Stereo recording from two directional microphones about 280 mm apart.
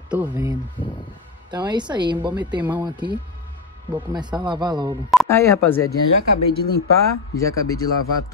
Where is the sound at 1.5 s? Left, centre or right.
Centre.